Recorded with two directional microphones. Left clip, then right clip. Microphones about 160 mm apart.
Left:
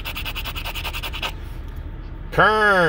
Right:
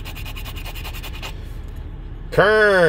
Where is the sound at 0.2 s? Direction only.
10° left (ahead or behind).